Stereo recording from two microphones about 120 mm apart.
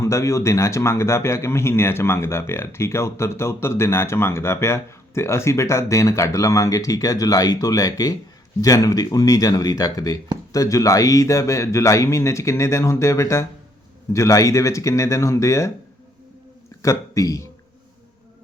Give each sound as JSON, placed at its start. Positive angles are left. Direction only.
{"t": 0.0, "sound": "a man's voice", "side_deg": 25}
{"t": 16.8, "sound": "a man's voice", "side_deg": 25}